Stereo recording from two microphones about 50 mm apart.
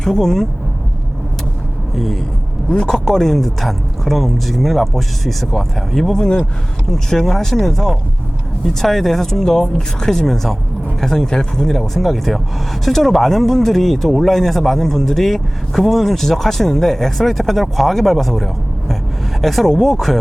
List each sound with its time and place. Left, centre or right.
0.0 s speech: centre
2.0 s speech: centre
2.6 s a man's voice: centre
6.2 s speech: centre